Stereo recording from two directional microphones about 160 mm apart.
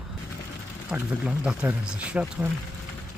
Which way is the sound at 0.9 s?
5° right (ahead or behind).